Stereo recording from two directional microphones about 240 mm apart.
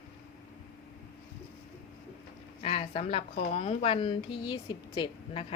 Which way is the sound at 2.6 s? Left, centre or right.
Left.